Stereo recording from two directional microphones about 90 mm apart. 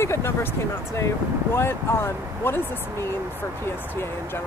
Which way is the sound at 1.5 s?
25° left (ahead or behind).